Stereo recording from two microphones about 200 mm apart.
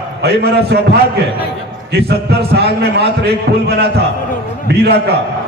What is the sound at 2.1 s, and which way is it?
A man's voice, 55° right (ahead or behind).